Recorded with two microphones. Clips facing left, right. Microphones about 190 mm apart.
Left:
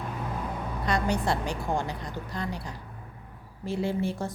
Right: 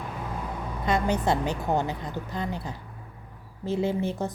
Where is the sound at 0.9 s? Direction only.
25° right (ahead or behind).